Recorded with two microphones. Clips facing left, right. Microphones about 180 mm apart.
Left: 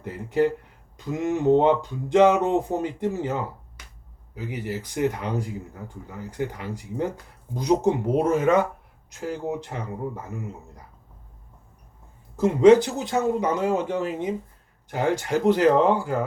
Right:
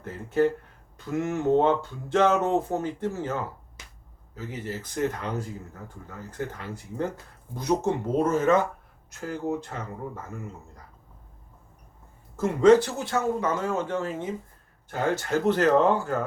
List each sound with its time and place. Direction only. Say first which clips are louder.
0.0 s speech: left 1 dB; 15° left (ahead or behind)
12.4 s speech: left 3 dB; 15° left (ahead or behind)